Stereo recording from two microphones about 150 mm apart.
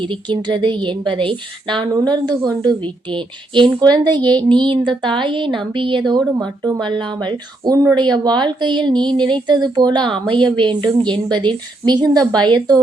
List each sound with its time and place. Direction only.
0.0 s a woman's voice: 35° right (ahead or behind)